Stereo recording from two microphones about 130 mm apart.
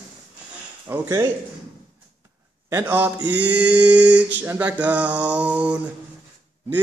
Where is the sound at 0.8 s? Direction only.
20° right (ahead or behind).